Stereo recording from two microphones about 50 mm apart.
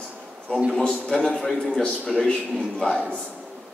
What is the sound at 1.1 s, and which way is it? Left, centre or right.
A man's voice, centre.